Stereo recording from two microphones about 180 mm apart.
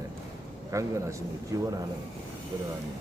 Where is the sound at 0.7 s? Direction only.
15° right (ahead or behind).